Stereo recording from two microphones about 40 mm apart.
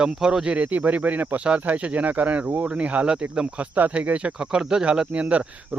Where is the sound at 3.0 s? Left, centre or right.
Right.